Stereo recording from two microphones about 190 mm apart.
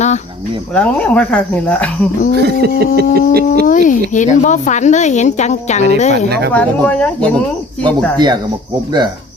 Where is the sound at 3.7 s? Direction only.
45° left (ahead or behind).